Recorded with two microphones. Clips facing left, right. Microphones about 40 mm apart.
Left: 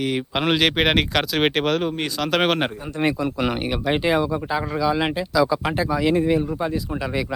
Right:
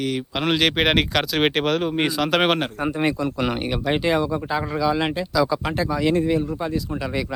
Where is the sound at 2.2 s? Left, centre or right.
Centre.